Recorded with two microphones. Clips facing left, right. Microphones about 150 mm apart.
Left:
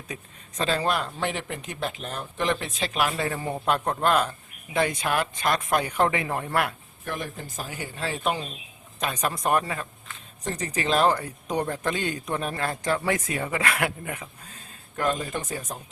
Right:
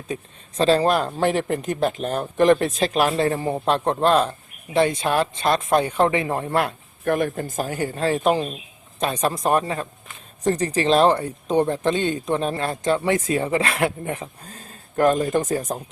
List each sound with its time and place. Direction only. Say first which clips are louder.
0.1 s speech: right 10 dB; 30° right (ahead or behind)
7.0 s speech: right 12 dB; 55° right (ahead or behind)
9.0 s speech: right 6 dB; 30° right (ahead or behind)
14.9 s speech: right 9 dB; 45° right (ahead or behind)